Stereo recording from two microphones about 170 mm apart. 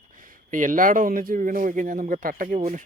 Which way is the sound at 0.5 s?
50° right (ahead or behind).